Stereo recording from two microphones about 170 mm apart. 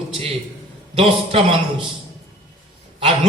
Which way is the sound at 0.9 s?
35° right (ahead or behind).